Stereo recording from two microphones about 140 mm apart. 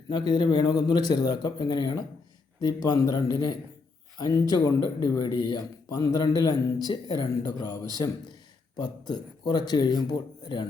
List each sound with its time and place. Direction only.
0.1 s a man's voice: 30° left (ahead or behind)